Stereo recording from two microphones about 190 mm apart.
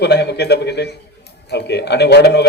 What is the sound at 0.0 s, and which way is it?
A man's voice, 60° left (ahead or behind).